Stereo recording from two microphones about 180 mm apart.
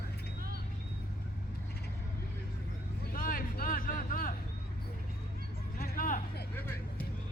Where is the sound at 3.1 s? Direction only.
55° left (ahead or behind).